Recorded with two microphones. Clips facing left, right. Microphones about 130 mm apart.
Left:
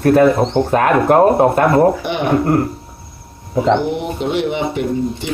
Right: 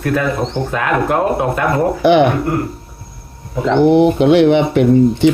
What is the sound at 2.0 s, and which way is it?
Speech, 80° right.